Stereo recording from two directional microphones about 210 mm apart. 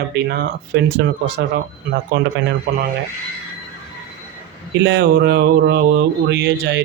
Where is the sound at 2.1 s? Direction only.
50° right (ahead or behind).